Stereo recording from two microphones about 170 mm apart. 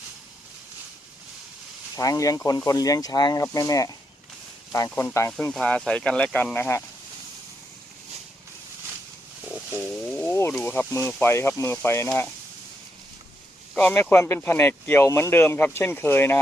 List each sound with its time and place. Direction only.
2.0 s speech: 20° left (ahead or behind)
5.5 s speech: 5° left (ahead or behind)
9.9 s a sound: 5° left (ahead or behind)
10.5 s speech: 10° left (ahead or behind)
13.7 s speech: 10° left (ahead or behind)